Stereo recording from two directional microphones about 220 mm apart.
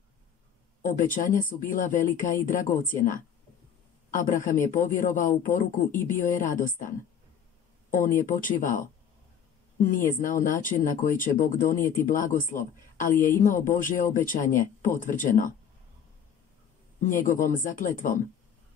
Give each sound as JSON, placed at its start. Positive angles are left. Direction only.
{"t": 0.8, "sound": "speech", "side_deg": 35}
{"t": 5.9, "sound": "speech", "side_deg": 10}
{"t": 6.4, "sound": "speech", "side_deg": 35}
{"t": 7.9, "sound": "speech", "side_deg": 35}
{"t": 17.0, "sound": "speech", "side_deg": 35}